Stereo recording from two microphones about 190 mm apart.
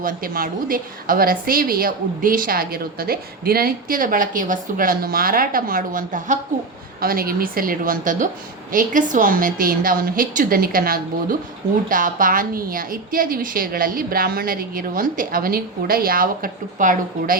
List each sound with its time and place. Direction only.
0.0 s a woman's voice: 50° right (ahead or behind)